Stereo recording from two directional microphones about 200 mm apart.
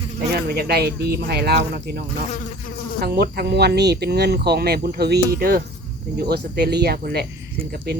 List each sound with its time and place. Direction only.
0.3 s speech: 50° right (ahead or behind)
3.0 s speech: 50° right (ahead or behind)